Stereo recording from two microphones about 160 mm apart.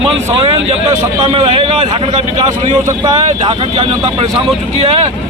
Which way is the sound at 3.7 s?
35° right (ahead or behind).